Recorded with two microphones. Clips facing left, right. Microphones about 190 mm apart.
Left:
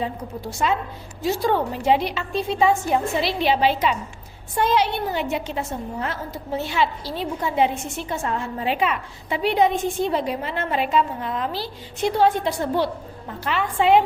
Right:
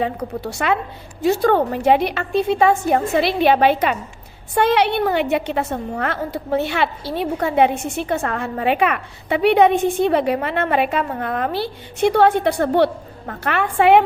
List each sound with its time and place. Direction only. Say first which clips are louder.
0.0 s a woman's voice: right 5 dB; 70° right (ahead or behind)